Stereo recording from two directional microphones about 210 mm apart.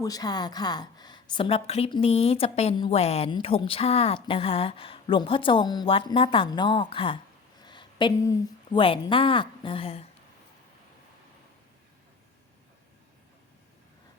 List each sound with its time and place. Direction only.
0.0 s a woman's voice: 20° left (ahead or behind)